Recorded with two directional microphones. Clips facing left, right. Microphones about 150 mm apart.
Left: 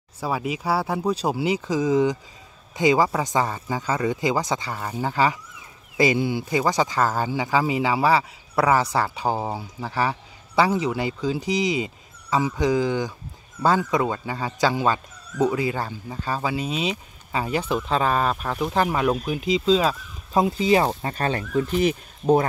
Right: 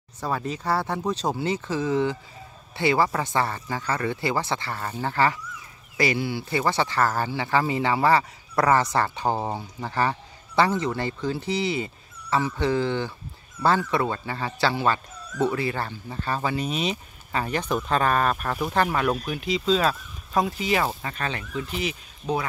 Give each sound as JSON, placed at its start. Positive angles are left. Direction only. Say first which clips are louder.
{"t": 0.2, "sound": "speech", "louder": "left 2 dB", "side_deg": 10}
{"t": 21.1, "sound": "speech", "louder": "left 6 dB", "side_deg": 35}